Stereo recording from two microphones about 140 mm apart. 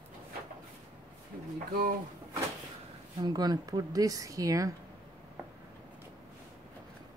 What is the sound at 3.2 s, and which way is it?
A woman's voice, 30° right (ahead or behind).